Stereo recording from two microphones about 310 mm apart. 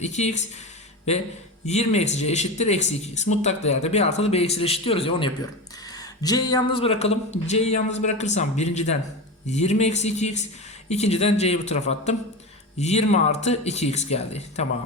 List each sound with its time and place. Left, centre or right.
0.0 s speech: left
1.6 s speech: left